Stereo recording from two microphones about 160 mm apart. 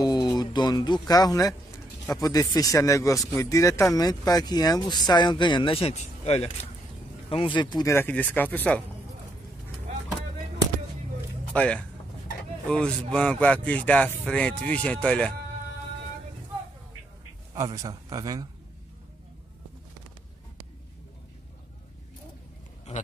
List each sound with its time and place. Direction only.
0.0 s speech: 25° left (ahead or behind); by 8.8 s 10° left (ahead or behind)
11.5 s speech: 10° left (ahead or behind)
17.6 s speech: 25° right (ahead or behind)